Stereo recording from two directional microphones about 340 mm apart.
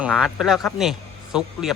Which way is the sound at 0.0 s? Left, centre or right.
Centre.